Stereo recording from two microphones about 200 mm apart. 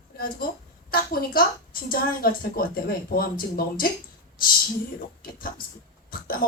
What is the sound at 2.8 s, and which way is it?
A woman's voice, 45° left (ahead or behind).